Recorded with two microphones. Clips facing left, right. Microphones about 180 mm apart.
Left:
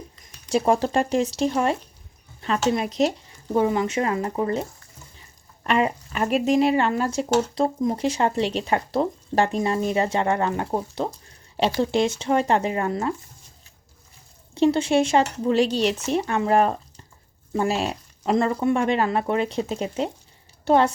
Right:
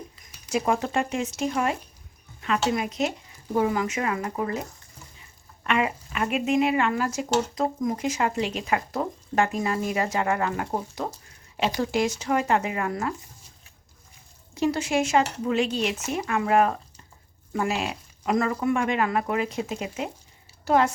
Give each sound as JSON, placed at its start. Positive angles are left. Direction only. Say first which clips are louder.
{"t": 0.5, "sound": "speech", "louder": "left 4 dB", "side_deg": 30}
{"t": 5.6, "sound": "speech", "louder": "left 3 dB", "side_deg": 35}
{"t": 14.5, "sound": "speech", "louder": "left 5 dB", "side_deg": 30}